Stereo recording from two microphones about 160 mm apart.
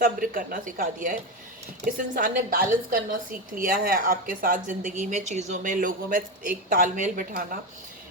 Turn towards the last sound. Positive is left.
turn(degrees=-60)  # may be behind; listen again after turning